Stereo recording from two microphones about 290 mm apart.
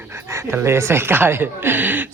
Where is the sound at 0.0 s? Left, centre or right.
Centre.